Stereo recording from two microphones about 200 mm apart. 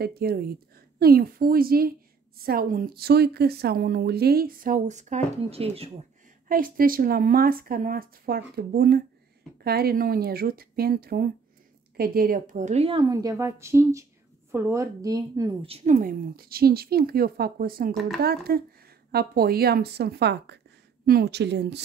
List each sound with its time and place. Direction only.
0.0 s a woman's voice: 50° right (ahead or behind); by 5.9 s 30° right (ahead or behind)
6.5 s a woman's voice: 45° right (ahead or behind)
13.1 s speech: 15° right (ahead or behind)
15.6 s a woman's voice: 30° right (ahead or behind); by 21.8 s 55° right (ahead or behind)